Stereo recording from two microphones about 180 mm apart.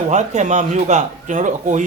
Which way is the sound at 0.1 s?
40° right (ahead or behind).